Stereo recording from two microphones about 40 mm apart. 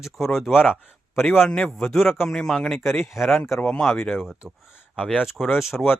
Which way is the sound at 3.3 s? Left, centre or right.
Centre.